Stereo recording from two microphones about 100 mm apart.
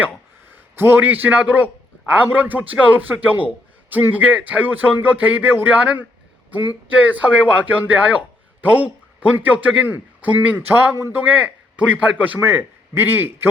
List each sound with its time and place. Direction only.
0.5 s a man's voice: 20° right (ahead or behind)